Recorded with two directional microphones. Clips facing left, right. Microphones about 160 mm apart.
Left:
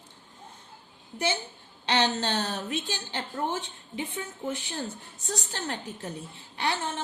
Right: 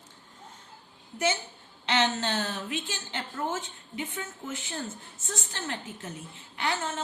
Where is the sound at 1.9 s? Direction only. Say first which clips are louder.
Left 1 dB; 35° left (ahead or behind).